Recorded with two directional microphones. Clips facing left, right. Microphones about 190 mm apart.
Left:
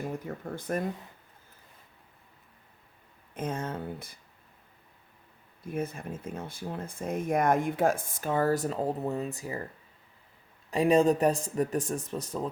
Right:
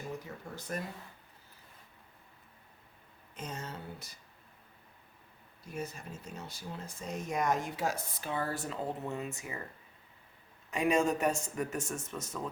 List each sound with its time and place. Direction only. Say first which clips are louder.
0.0 s speech: left 6 dB; 55° left (ahead or behind)
3.3 s speech: left 9 dB; 55° left (ahead or behind)
5.6 s speech: left 7 dB; 55° left (ahead or behind); by 9.6 s 35° left (ahead or behind)
10.7 s speech: left 6 dB; 35° left (ahead or behind)